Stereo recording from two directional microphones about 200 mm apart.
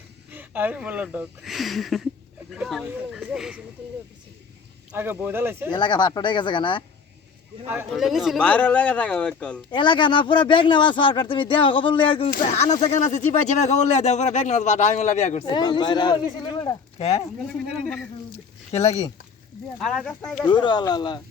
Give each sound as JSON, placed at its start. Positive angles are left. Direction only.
{"t": 0.3, "sound": "speech", "side_deg": -10}
{"t": 4.9, "sound": "speech", "side_deg": -10}
{"t": 5.7, "sound": "speech", "side_deg": 20}
{"t": 7.9, "sound": "speech", "side_deg": 0}
{"t": 9.7, "sound": "speech", "side_deg": 25}
{"t": 12.3, "sound": "speech", "side_deg": 40}
{"t": 15.5, "sound": "speech", "side_deg": 20}
{"t": 18.8, "sound": "speech", "side_deg": 35}
{"t": 19.8, "sound": "speech", "side_deg": 0}
{"t": 20.5, "sound": "speech", "side_deg": 20}